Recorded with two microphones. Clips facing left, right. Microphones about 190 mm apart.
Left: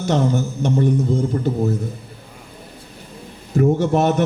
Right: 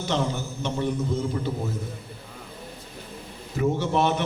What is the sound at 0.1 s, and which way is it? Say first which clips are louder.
Speech: left 8 dB; 45° left (ahead or behind).